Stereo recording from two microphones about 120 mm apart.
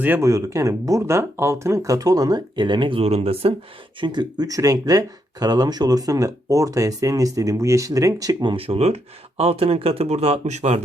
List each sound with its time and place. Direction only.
0.0 s speech: 20° right (ahead or behind); by 3.5 s 55° right (ahead or behind)
4.0 s speech: 40° right (ahead or behind); by 10.8 s 70° right (ahead or behind)